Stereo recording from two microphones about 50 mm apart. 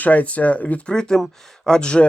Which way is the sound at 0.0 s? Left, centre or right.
Left.